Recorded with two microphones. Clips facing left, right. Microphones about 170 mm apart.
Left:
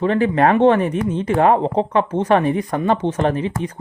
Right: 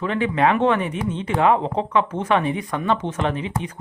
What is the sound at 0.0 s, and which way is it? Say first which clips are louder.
Speech: left 4 dB; 40° left (ahead or behind).